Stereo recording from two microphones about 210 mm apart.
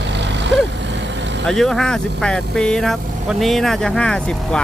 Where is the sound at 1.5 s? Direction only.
Centre (ahead or behind).